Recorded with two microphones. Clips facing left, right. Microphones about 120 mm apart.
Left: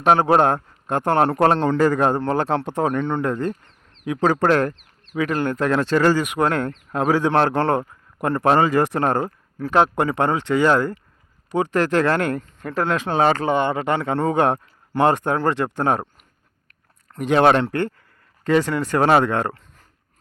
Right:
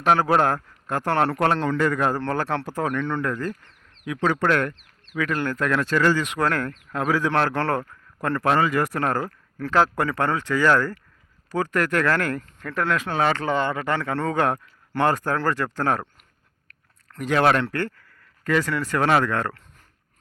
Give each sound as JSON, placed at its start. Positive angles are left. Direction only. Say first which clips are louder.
{"t": 0.0, "sound": "a man's voice", "louder": "left 3 dB", "side_deg": 25}
{"t": 17.1, "sound": "a man's voice", "louder": "left 4 dB", "side_deg": 20}